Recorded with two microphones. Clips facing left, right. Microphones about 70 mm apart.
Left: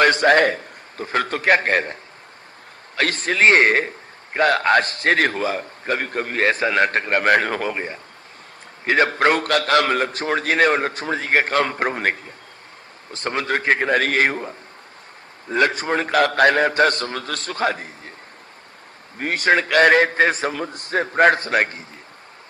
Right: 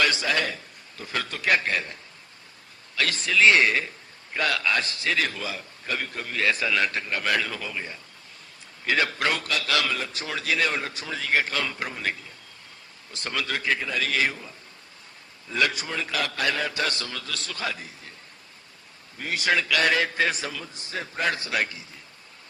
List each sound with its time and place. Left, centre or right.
0.0 s a man's voice: left
13.1 s a man's voice: left
15.4 s a man's voice: left
19.1 s a man's voice: left